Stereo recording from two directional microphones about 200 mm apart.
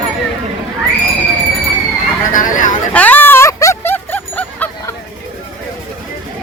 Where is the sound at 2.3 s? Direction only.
40° left (ahead or behind).